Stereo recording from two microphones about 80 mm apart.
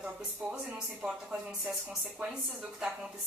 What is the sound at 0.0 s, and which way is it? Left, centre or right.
A woman's voice, centre.